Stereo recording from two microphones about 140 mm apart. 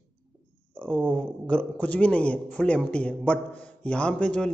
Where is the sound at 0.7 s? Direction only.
5° left (ahead or behind).